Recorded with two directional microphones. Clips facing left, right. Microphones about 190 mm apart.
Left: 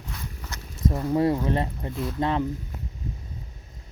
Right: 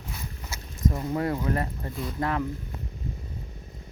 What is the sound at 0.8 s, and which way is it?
Speech, 25° left (ahead or behind).